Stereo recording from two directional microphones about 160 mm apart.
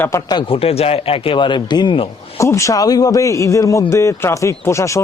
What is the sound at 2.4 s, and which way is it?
A man's voice, 20° left (ahead or behind).